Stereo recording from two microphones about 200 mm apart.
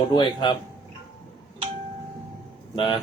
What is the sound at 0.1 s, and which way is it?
Speech, 20° left (ahead or behind).